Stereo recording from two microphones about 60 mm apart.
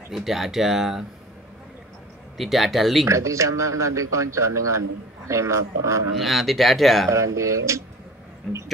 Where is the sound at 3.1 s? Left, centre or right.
Right.